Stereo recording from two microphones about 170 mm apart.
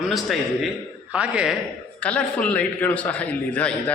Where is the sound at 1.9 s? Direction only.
5° left (ahead or behind).